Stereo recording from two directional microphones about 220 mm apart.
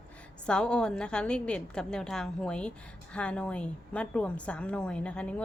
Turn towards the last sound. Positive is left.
turn(degrees=5)  # may be behind; listen again after turning